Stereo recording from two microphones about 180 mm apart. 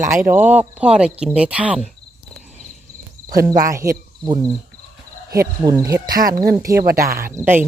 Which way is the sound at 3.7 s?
15° right (ahead or behind).